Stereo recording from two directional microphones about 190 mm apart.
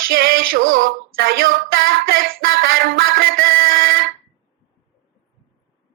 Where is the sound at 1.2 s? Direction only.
50° right (ahead or behind).